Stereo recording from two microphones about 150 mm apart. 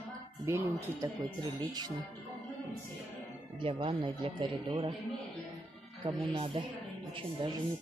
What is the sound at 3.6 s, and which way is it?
Speech, 35° right (ahead or behind).